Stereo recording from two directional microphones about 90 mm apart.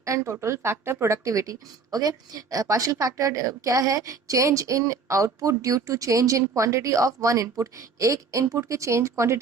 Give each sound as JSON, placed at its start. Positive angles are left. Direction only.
{"t": 0.0, "sound": "speech", "side_deg": -35}